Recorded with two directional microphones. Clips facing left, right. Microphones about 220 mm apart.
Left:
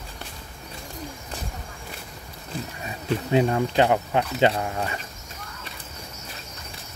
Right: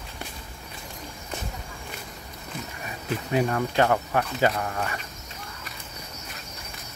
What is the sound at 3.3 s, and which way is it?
Speech, 25° left (ahead or behind).